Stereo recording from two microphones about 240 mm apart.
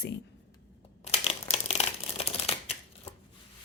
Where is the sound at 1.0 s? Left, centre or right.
Left.